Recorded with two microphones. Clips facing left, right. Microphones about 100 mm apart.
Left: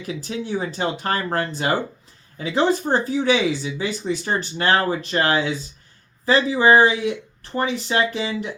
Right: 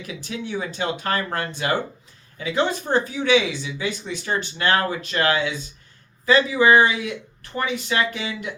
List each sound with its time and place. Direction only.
0.3 s speech: 40° left (ahead or behind)